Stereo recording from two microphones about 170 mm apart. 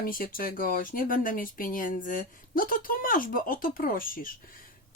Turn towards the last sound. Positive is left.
turn(degrees=55)  # may be behind; listen again after turning